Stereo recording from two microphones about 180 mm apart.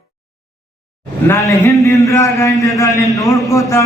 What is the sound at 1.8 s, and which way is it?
A man's voice, 15° left (ahead or behind).